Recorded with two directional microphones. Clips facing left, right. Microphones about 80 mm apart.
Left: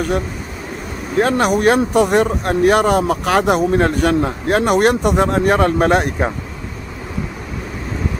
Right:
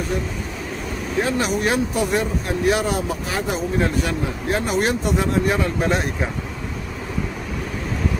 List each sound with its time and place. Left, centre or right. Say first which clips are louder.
1.1 s speech: left 7 dB; left